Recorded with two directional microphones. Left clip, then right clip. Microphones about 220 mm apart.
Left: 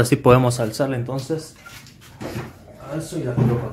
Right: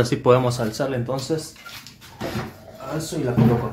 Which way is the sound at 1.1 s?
Centre (ahead or behind).